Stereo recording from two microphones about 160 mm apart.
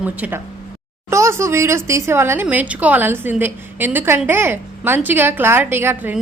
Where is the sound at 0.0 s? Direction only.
10° right (ahead or behind).